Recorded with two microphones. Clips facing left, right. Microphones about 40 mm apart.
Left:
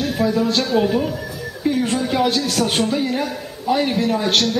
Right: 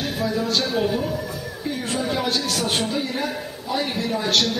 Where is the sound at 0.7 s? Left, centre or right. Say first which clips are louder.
Left 6 dB; left.